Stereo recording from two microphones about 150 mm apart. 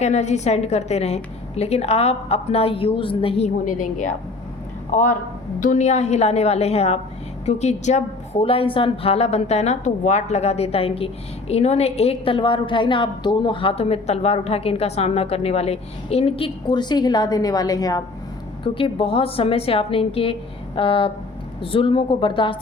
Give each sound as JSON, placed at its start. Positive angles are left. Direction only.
{"t": 0.0, "sound": "a woman's voice", "side_deg": 50}
{"t": 3.7, "sound": "a woman's voice", "side_deg": 60}
{"t": 18.6, "sound": "a woman's voice", "side_deg": 35}